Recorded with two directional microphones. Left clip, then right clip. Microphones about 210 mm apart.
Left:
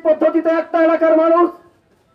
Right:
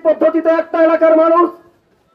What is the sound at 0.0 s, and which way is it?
Speech, 15° right (ahead or behind).